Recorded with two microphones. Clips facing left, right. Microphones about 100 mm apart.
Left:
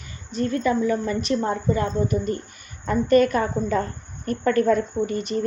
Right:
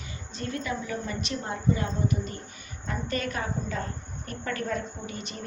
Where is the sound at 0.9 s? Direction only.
40° left (ahead or behind).